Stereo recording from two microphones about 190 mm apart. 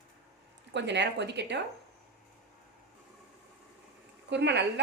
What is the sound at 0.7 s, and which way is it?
Speech, 65° right (ahead or behind).